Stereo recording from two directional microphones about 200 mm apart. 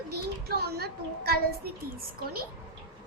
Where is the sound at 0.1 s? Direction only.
55° right (ahead or behind).